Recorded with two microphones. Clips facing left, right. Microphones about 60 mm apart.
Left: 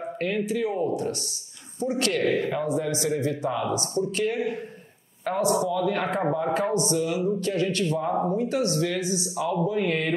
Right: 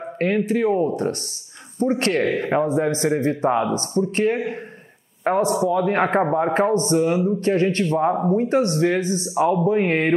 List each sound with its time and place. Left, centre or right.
0.5 s speech: right